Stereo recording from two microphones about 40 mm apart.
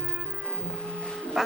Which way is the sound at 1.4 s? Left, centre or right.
Centre.